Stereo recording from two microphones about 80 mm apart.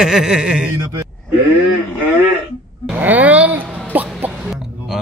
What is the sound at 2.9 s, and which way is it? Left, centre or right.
Music, right.